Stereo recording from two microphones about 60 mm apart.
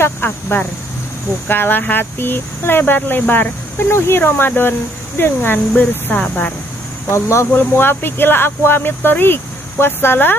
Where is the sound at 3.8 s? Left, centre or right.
Left.